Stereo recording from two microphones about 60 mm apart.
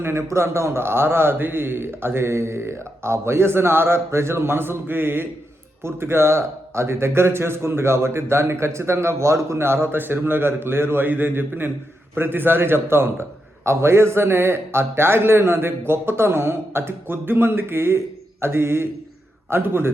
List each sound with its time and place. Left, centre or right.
0.0 s a man's voice: right